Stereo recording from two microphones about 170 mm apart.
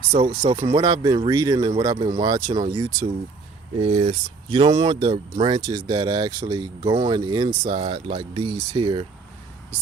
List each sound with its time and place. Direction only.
0.1 s speech: 30° right (ahead or behind)
3.8 s speech: 35° right (ahead or behind)